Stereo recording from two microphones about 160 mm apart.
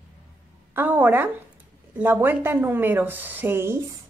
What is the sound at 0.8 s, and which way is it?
A woman's voice, 10° right (ahead or behind).